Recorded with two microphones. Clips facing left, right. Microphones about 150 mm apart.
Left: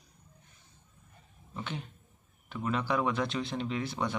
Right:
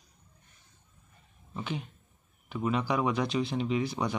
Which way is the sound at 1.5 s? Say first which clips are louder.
Right 3 dB; 5° right (ahead or behind).